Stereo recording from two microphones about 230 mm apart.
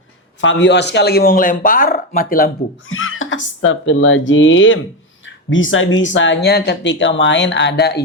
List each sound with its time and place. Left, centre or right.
0.4 s speech: left
2.9 s speech: left